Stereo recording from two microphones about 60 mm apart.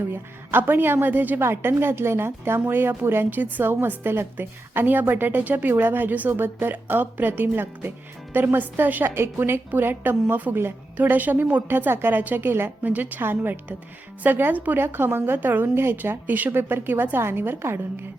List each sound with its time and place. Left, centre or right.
0.1 s a woman's voice: right